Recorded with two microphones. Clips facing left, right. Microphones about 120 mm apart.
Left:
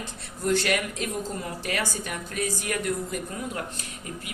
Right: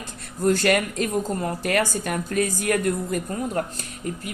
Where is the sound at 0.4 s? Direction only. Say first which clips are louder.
Right 5 dB; 45° right (ahead or behind).